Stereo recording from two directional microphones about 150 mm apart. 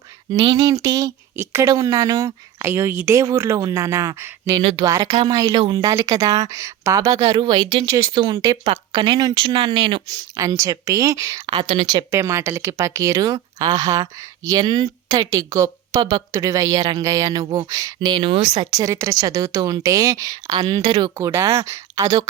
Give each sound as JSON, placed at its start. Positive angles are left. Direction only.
{"t": 0.3, "sound": "speech", "side_deg": -25}
{"t": 4.5, "sound": "speech", "side_deg": -40}
{"t": 4.8, "sound": "speech", "side_deg": -25}
{"t": 10.1, "sound": "speech", "side_deg": -25}